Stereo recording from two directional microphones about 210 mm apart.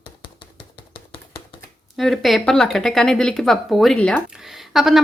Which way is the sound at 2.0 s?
Centre (ahead or behind).